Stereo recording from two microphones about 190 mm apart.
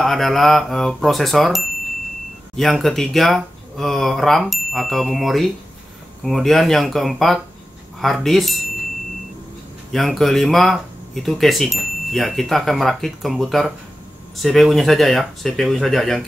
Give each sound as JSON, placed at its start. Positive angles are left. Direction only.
{"t": 0.0, "sound": "speech", "side_deg": 0}
{"t": 9.9, "sound": "speech", "side_deg": 0}